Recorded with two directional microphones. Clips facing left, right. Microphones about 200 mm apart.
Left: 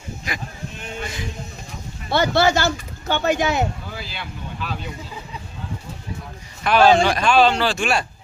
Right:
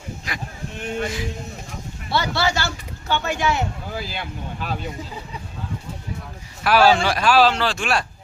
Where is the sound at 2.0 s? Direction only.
50° left (ahead or behind).